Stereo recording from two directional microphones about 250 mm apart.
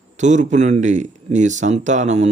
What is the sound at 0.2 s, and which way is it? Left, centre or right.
A man's voice, right.